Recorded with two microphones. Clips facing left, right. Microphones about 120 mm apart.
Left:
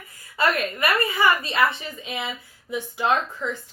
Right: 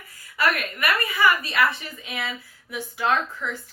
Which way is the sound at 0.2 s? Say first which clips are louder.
Left 2 dB; 25° left (ahead or behind).